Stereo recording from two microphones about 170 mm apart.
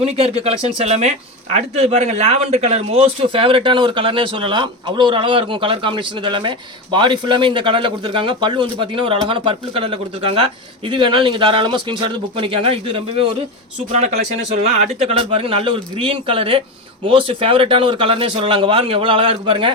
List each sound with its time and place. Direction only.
0.0 s a man's voice: 35° right (ahead or behind)